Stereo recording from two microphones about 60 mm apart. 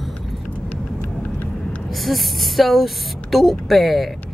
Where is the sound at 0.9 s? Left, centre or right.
Left.